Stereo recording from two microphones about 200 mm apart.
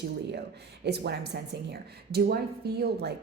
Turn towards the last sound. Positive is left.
turn(degrees=-55)  # may be behind; listen again after turning